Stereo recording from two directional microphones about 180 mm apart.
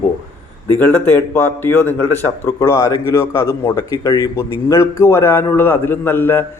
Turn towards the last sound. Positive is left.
turn(degrees=10)  # may be behind; listen again after turning